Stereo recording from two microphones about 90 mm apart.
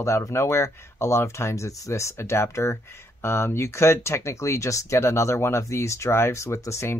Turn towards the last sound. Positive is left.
turn(degrees=30)  # may be behind; listen again after turning